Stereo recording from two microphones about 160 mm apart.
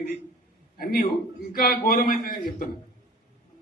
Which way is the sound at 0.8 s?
70° left (ahead or behind).